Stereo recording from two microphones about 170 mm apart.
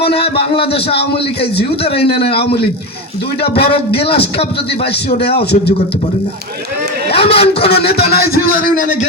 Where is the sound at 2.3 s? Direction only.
35° left (ahead or behind).